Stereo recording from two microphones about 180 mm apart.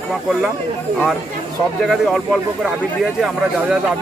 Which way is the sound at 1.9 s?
Centre (ahead or behind).